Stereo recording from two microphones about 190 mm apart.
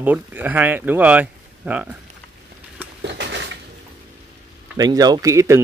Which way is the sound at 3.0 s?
65° right (ahead or behind).